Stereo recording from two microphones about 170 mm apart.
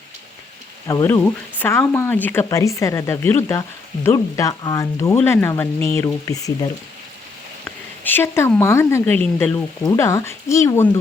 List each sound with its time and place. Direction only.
0.9 s a woman's voice: 20° left (ahead or behind)